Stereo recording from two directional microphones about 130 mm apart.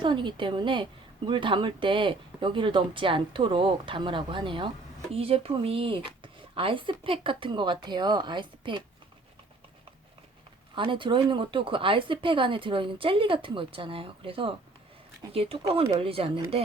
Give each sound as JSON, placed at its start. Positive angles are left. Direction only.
{"t": 0.0, "sound": "speech", "side_deg": -35}
{"t": 10.8, "sound": "speech", "side_deg": -40}